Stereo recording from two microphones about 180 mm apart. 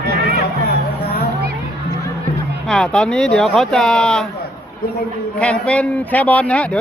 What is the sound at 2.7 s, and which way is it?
Speech, 5° left (ahead or behind).